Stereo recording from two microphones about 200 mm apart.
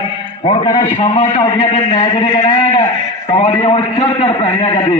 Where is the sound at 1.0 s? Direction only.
30° left (ahead or behind).